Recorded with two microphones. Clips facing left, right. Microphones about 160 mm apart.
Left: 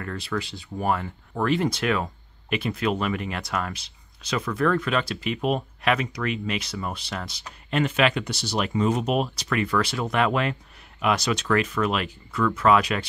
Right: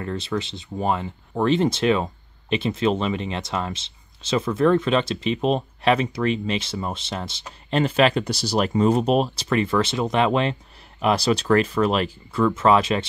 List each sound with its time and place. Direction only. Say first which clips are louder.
0.0 s speech: right 3 dB; 25° right (ahead or behind)